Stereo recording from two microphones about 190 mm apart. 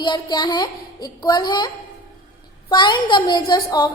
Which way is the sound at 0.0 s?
25° left (ahead or behind).